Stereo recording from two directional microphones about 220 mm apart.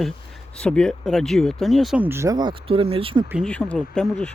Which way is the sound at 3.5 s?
5° left (ahead or behind).